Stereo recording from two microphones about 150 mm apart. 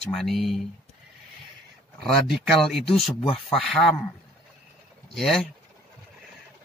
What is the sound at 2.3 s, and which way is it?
Speech, centre (ahead or behind).